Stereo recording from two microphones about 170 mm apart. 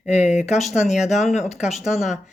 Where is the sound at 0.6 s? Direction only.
5° right (ahead or behind).